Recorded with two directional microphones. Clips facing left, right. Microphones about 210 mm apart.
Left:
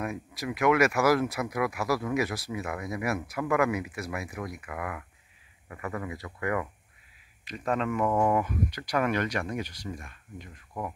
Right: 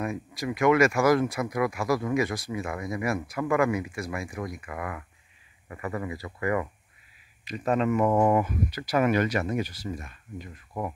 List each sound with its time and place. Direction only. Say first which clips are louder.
0.0 s speech: right 3 dB; 5° left (ahead or behind); by 8.5 s 15° right (ahead or behind)
8.5 s speech: right 2 dB; 5° right (ahead or behind)
10.7 s speech: right 3 dB; 15° right (ahead or behind)